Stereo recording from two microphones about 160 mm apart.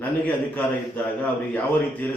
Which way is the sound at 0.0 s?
10° left (ahead or behind).